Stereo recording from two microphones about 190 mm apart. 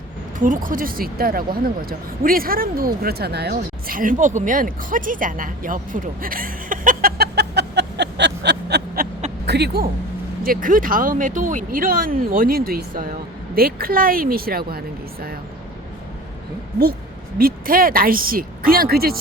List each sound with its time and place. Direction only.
0.3 s speech: 45° right (ahead or behind); by 9.8 s 60° right (ahead or behind)
10.4 s speech: 50° right (ahead or behind)
17.3 s speech: 50° right (ahead or behind)